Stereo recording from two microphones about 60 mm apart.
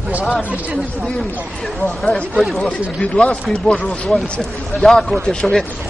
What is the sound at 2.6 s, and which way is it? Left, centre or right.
Speech, centre.